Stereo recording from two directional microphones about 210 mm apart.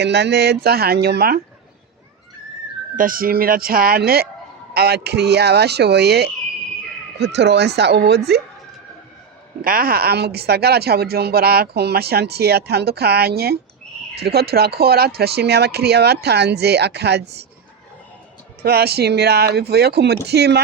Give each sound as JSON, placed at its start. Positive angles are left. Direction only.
{"t": 0.0, "sound": "speech", "side_deg": -55}
{"t": 2.9, "sound": "speech", "side_deg": -40}
{"t": 9.6, "sound": "speech", "side_deg": -45}
{"t": 18.6, "sound": "speech", "side_deg": -50}